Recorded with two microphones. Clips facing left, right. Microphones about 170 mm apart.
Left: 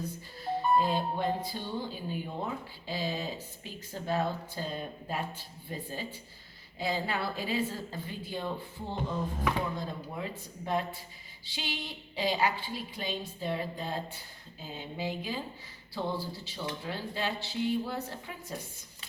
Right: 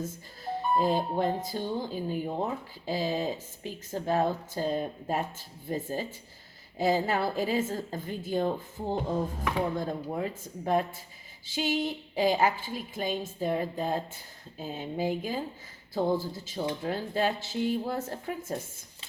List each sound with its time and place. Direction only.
0.0 s a woman's voice: 45° right (ahead or behind)